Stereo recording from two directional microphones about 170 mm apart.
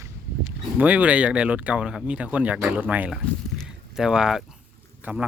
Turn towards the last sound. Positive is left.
turn(degrees=-5)  # may be behind; listen again after turning